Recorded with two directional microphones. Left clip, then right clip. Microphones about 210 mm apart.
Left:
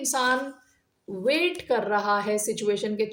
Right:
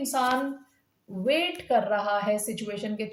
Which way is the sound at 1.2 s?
50° left (ahead or behind).